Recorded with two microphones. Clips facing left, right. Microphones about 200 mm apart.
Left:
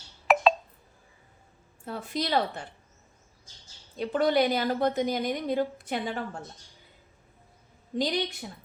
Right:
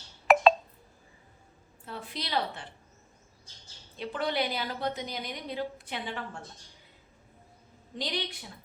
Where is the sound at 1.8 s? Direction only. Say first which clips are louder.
Left 7 dB; 45° left (ahead or behind).